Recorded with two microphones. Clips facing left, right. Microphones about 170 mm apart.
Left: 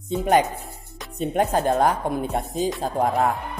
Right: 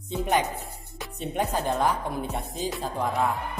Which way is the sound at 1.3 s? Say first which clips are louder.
Left 6 dB; 55° left (ahead or behind).